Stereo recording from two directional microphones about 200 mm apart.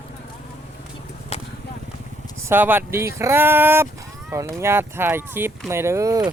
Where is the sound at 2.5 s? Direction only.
10° right (ahead or behind).